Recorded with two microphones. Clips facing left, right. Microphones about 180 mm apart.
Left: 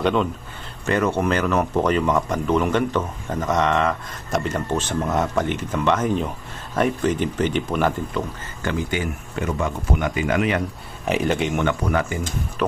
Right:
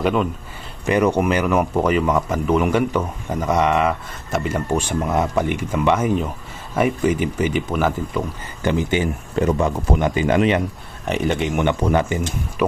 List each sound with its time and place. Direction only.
0.0 s speech: 5° right (ahead or behind)
8.6 s speech: 20° right (ahead or behind)
9.3 s speech: 35° right (ahead or behind)
11.1 s speech: centre (ahead or behind)
11.5 s speech: 20° right (ahead or behind)
12.6 s music: 10° right (ahead or behind)